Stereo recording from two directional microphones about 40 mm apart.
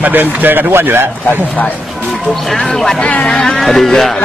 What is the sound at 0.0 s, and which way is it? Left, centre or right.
Speech, right.